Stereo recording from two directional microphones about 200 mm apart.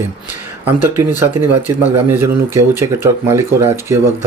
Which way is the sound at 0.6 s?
10° right (ahead or behind).